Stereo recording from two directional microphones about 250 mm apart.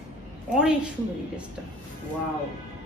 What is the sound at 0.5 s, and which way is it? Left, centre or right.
Speech, centre.